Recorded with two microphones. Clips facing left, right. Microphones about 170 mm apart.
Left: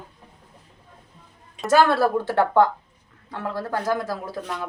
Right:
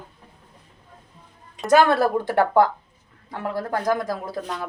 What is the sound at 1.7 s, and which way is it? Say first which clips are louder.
Speech: right 1 dB; 15° right (ahead or behind).